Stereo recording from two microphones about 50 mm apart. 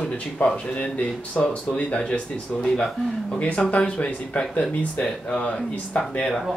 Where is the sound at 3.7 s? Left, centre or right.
Left.